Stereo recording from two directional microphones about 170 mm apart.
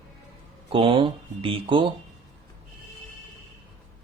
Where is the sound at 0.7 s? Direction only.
30° right (ahead or behind).